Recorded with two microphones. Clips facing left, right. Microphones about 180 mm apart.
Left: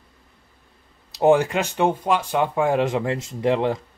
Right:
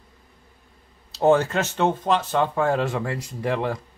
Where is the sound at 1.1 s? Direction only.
15° left (ahead or behind).